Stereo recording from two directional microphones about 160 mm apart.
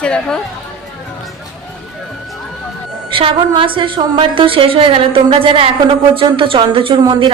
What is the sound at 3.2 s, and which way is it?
A woman's voice, 30° right (ahead or behind).